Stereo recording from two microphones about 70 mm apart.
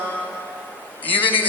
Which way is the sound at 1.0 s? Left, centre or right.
Left.